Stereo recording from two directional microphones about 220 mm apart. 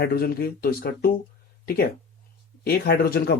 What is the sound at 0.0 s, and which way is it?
Speech, 45° left (ahead or behind).